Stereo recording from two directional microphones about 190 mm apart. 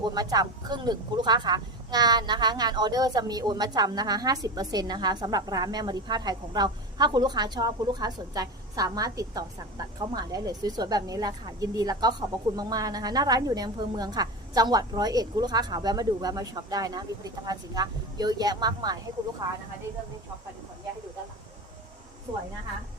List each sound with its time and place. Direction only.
0.0 s a woman's voice: 20° right (ahead or behind)